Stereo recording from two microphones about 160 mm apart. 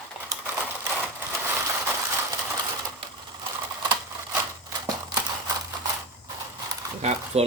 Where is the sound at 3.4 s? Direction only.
30° right (ahead or behind).